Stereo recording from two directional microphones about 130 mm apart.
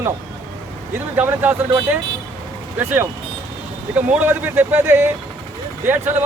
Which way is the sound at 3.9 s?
10° right (ahead or behind).